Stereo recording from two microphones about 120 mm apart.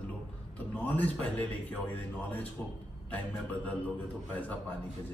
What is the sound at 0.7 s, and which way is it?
Speech, 15° left (ahead or behind).